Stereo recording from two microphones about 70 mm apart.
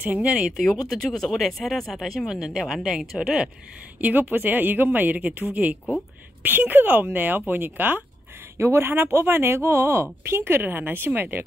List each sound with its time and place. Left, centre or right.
0.0 s speech: centre
0.8 s speech: centre
2.2 s speech: centre
4.0 s speech: right
8.5 s speech: right